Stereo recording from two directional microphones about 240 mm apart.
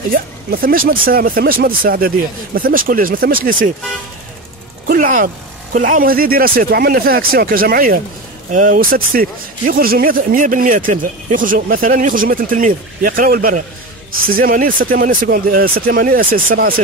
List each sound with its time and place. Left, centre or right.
0.1 s speech: right
4.8 s speech: right